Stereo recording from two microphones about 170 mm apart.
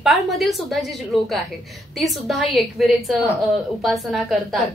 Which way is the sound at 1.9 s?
Centre (ahead or behind).